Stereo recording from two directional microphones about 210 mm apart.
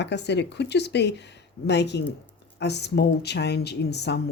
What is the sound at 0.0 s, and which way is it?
Speech, 55° left (ahead or behind).